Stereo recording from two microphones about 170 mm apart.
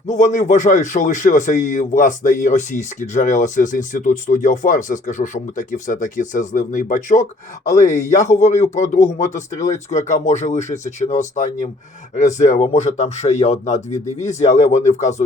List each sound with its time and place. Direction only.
0.1 s speech: 45° left (ahead or behind)